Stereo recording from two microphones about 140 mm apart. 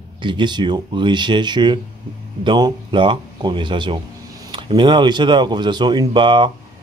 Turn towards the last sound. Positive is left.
turn(degrees=-35)  # may be behind; listen again after turning